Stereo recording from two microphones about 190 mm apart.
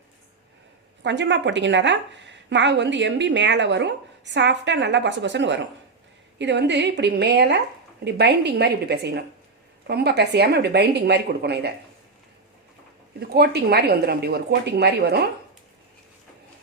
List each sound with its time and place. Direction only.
1.0 s a woman's voice: 70° right (ahead or behind)
13.1 s a woman's voice: 55° right (ahead or behind)